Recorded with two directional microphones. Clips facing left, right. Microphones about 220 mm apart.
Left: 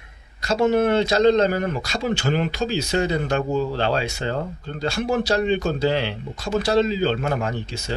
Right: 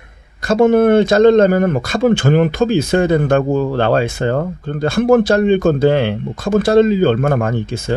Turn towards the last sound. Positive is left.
turn(degrees=-50)  # may be behind; listen again after turning